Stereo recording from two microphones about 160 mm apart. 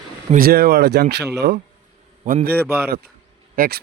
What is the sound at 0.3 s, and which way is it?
Speech, 70° right (ahead or behind).